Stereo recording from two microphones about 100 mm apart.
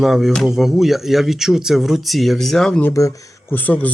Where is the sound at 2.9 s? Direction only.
35° left (ahead or behind).